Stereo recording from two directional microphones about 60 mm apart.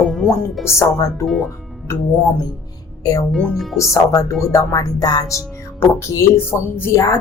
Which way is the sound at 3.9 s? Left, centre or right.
Left.